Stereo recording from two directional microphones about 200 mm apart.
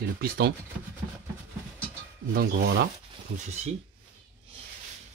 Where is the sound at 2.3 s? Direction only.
50° right (ahead or behind).